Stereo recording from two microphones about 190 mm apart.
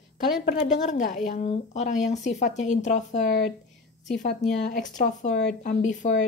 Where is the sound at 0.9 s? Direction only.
40° left (ahead or behind).